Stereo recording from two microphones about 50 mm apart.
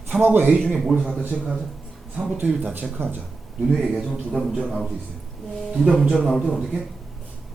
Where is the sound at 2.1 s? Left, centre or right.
Centre.